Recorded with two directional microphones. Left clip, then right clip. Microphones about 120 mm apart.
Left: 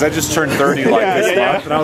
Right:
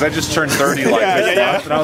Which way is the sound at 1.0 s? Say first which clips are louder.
Even; 45° right (ahead or behind).